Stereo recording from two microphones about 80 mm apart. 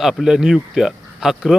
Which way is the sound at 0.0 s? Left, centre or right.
Centre.